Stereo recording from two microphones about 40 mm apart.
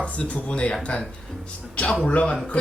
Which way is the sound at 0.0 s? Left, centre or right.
Left.